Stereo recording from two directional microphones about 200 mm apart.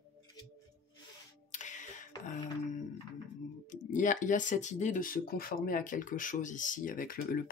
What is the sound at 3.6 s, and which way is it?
Speech, 40° left (ahead or behind).